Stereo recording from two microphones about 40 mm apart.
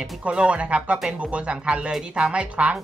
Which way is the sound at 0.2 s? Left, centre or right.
Right.